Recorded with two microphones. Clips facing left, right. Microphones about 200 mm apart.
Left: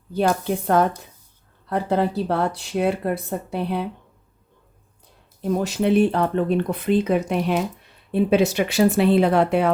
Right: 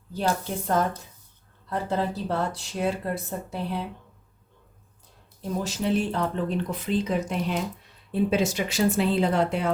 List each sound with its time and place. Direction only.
0.1 s speech: 65° left (ahead or behind)
5.4 s speech: 65° left (ahead or behind)